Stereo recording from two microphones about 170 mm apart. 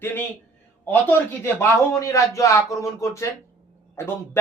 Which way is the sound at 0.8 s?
10° left (ahead or behind).